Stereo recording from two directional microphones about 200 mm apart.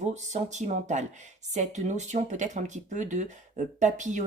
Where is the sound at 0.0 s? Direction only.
35° right (ahead or behind).